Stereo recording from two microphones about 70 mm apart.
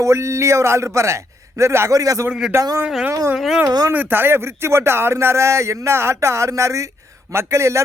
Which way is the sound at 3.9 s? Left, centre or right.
Right.